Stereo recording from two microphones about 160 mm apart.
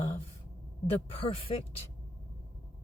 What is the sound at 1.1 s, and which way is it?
Speech, 35° left (ahead or behind).